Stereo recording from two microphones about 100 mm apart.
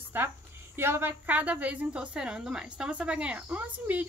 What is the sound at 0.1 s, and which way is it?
A woman's voice, 20° right (ahead or behind).